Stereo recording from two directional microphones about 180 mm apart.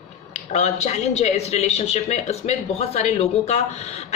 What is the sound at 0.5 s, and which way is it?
A woman's voice, 40° left (ahead or behind).